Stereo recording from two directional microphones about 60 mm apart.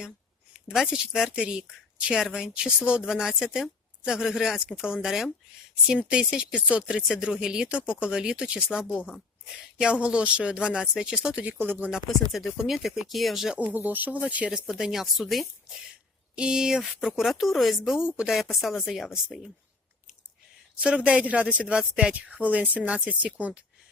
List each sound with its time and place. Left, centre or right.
0.5 s speech: centre
6.1 s speech: centre
11.5 s speech: right
12.0 s speech: centre
13.6 s speech: right
14.5 s speech: centre
16.3 s speech: centre
17.9 s speech: centre
18.5 s speech: centre
20.8 s speech: centre